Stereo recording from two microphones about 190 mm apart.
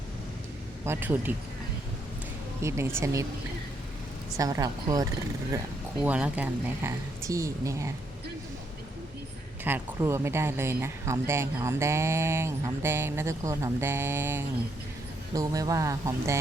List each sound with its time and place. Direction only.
0.9 s speech: 10° right (ahead or behind)
2.6 s speech: 15° right (ahead or behind)
4.4 s a woman's voice: 20° right (ahead or behind)
6.0 s speech: 5° right (ahead or behind)
9.6 s speech: 10° right (ahead or behind)